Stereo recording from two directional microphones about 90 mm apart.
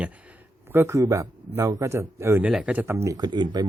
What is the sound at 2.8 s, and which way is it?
Speech, 30° right (ahead or behind).